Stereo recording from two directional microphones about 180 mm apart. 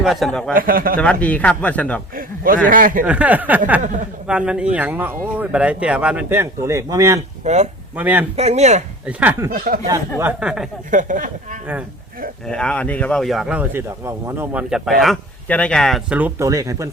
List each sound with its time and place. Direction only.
0.0 s speech: centre (ahead or behind)
0.5 s a man's voice: 50° right (ahead or behind)
0.9 s a man's voice: 5° left (ahead or behind)
2.1 s a sound: 50° right (ahead or behind)
2.6 s a man's voice: 50° right (ahead or behind)
3.1 s speech: 10° right (ahead or behind)
7.4 s speech: 40° right (ahead or behind)
7.9 s speech: 10° right (ahead or behind)
8.4 s speech: 35° right (ahead or behind)
9.0 s speech: 10° right (ahead or behind)
9.5 s a man's voice: 55° right (ahead or behind)
10.2 s speech: 10° right (ahead or behind)
10.9 s a man's voice: 45° right (ahead or behind)
12.5 s speech: 5° left (ahead or behind); by 16.9 s 15° right (ahead or behind)